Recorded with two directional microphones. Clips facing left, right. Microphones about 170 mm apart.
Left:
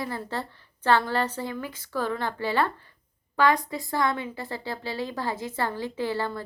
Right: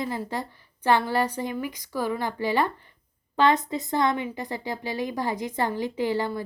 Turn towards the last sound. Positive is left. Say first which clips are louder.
# right 3 dB
turn(degrees=-15)  # may be behind; listen again after turning